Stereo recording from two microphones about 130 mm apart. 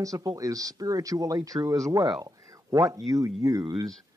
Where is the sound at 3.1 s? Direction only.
25° right (ahead or behind).